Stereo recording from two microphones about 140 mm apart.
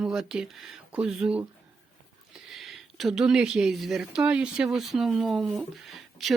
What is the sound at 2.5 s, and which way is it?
A woman's voice, centre (ahead or behind).